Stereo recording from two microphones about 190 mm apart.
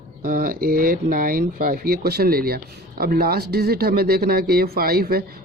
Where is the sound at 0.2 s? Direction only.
50° right (ahead or behind).